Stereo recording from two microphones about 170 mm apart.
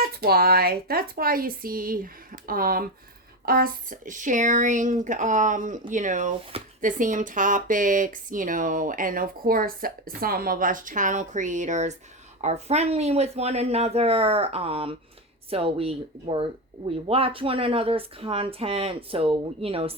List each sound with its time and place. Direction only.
0.0 s speech: 65° right (ahead or behind); by 20.0 s 35° right (ahead or behind)